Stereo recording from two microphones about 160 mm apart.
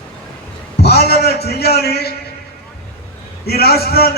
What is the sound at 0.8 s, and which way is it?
A man's voice, 90° left.